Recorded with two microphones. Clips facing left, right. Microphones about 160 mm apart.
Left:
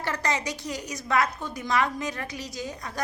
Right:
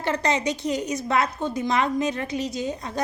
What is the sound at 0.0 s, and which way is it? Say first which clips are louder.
A woman's voice: right 5 dB; 25° right (ahead or behind).